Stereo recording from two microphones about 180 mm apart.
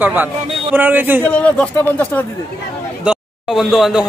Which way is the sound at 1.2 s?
5° left (ahead or behind).